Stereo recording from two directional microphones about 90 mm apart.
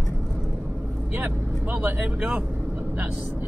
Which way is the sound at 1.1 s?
15° right (ahead or behind).